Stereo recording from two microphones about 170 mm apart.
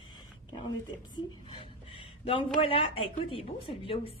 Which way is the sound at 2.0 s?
30° left (ahead or behind).